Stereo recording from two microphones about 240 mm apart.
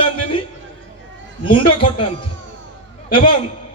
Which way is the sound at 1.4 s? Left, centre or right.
Left.